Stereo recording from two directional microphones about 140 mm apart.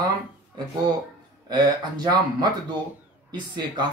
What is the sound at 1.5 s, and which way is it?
Speech, 30° right (ahead or behind).